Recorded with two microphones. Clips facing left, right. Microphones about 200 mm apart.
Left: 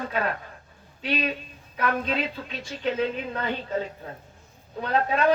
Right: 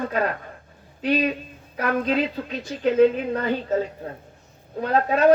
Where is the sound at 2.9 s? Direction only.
45° right (ahead or behind).